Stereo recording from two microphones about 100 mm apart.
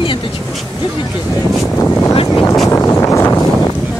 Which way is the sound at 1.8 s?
20° left (ahead or behind).